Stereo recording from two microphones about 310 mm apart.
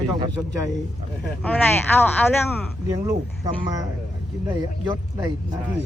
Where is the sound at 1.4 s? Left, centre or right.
Centre.